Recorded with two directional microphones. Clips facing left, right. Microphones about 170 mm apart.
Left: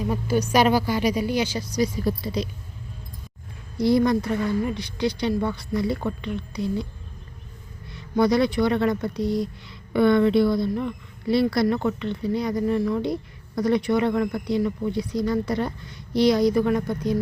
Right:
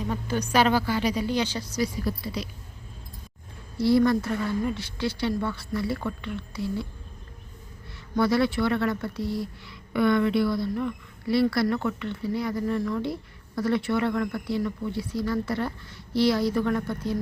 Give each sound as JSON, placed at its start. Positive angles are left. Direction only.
{"t": 0.1, "sound": "speech", "side_deg": 10}
{"t": 3.8, "sound": "speech", "side_deg": 15}
{"t": 7.9, "sound": "a woman's voice", "side_deg": 20}